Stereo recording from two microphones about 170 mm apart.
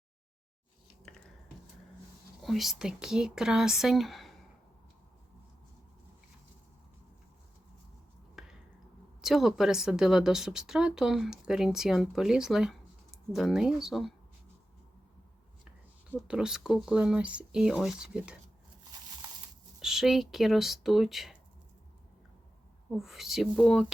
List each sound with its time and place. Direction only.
2.4 s speech: centre (ahead or behind)
8.4 s a sound: centre (ahead or behind)
9.2 s speech: centre (ahead or behind)
16.1 s speech: 5° right (ahead or behind)
19.8 s speech: centre (ahead or behind)
22.9 s speech: centre (ahead or behind)